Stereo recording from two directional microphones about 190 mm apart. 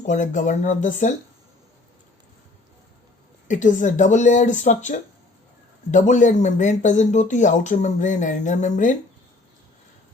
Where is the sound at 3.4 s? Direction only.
40° left (ahead or behind).